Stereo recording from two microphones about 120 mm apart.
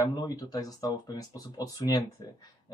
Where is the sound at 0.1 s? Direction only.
35° left (ahead or behind).